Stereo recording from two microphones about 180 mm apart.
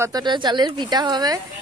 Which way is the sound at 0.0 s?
20° right (ahead or behind).